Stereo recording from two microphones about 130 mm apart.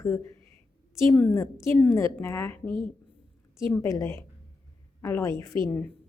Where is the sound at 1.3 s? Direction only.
20° left (ahead or behind).